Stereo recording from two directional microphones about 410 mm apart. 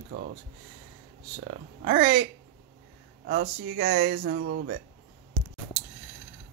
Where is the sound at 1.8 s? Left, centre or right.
Right.